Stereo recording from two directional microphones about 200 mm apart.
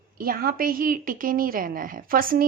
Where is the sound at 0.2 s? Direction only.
45° right (ahead or behind).